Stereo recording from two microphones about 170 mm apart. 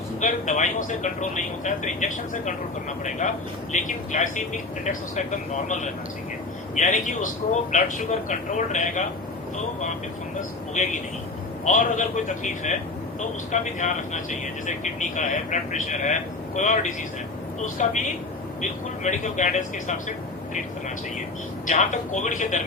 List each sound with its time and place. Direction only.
0.2 s speech: 50° left (ahead or behind)
11.6 s speech: 45° left (ahead or behind)
21.7 s speech: 45° left (ahead or behind)